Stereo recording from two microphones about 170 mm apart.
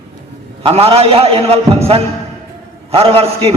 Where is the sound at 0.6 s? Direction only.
35° right (ahead or behind).